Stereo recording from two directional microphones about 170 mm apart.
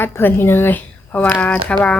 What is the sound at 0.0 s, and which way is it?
Speech, 10° left (ahead or behind).